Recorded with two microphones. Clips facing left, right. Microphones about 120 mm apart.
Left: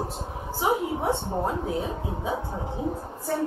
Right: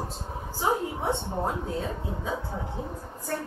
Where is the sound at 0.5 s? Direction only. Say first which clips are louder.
Left 2 dB; 15° left (ahead or behind).